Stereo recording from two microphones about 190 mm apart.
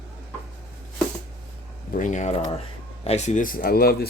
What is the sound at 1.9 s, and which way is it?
Speech, 40° left (ahead or behind).